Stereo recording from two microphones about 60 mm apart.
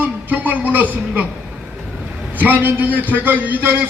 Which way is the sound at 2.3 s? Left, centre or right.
Right.